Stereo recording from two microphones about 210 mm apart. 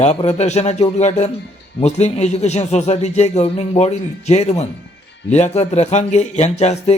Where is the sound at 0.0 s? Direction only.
30° left (ahead or behind).